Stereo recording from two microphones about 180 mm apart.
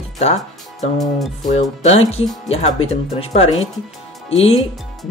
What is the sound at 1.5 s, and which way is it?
Speech, 35° left (ahead or behind).